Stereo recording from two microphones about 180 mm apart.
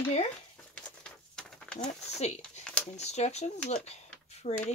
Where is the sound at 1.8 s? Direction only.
40° left (ahead or behind).